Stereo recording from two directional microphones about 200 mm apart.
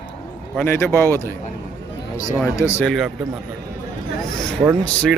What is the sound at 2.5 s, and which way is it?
Speech, 15° left (ahead or behind).